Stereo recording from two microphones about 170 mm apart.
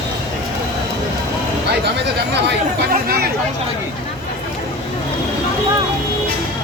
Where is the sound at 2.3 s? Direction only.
75° right (ahead or behind).